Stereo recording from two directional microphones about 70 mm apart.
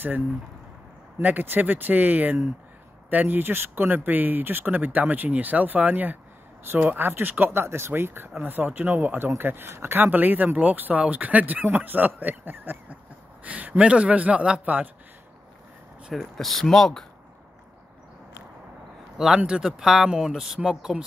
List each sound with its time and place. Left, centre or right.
1.2 s speech: right
16.1 s speech: centre
19.1 s speech: centre